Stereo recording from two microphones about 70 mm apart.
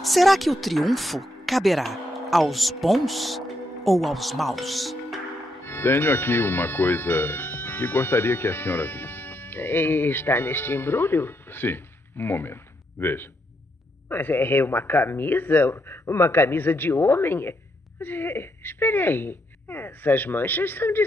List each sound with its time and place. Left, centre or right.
0.0 s speech: centre
5.7 s speech: left